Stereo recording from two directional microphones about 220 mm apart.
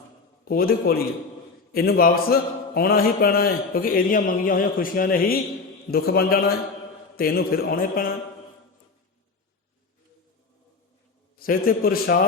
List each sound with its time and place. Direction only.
0.4 s a man's voice: 40° left (ahead or behind)
11.3 s a man's voice: 40° left (ahead or behind)